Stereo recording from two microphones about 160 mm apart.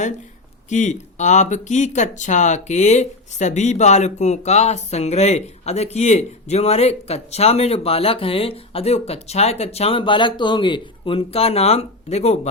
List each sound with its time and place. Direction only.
0.7 s speech: 50° left (ahead or behind)